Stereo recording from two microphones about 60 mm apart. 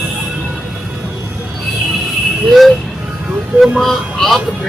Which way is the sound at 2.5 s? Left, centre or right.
Centre.